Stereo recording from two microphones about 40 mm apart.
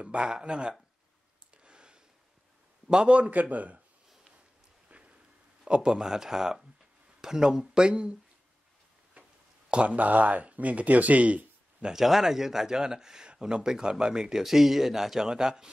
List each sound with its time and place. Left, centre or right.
0.2 s a man's voice: centre
1.6 s a sound: right
2.9 s speech: right
3.3 s speech: right
4.8 s a sound: right
5.9 s a man's voice: centre
7.9 s speech: right
9.7 s speech: right
9.9 s speech: right
11.8 s a man's voice: centre
14.4 s a man's voice: centre